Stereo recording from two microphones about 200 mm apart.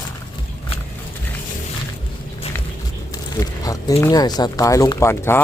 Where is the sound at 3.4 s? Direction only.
15° left (ahead or behind).